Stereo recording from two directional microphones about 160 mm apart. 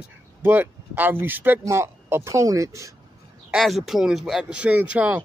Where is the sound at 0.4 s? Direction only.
10° right (ahead or behind).